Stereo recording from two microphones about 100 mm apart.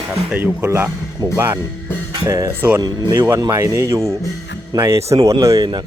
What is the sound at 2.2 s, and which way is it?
Speech, 35° right (ahead or behind).